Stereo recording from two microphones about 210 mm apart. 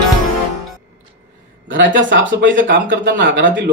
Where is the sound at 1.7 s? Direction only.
60° right (ahead or behind).